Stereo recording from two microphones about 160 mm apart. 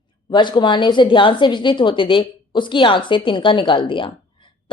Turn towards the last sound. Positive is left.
turn(degrees=30)  # may be behind; listen again after turning